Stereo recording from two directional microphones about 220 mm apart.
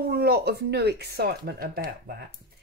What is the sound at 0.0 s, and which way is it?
A woman's voice, 45° right (ahead or behind).